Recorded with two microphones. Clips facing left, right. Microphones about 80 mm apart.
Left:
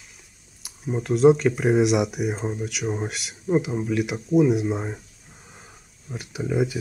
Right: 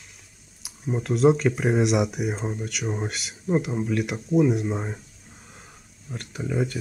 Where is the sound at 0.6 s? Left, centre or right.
Centre.